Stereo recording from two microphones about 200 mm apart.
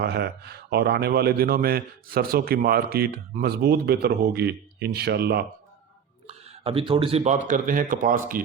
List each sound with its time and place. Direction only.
0.0 s speech: 55° right (ahead or behind)
6.2 s speech: 30° right (ahead or behind)